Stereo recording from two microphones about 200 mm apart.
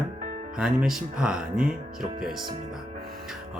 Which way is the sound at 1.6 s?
45° right (ahead or behind).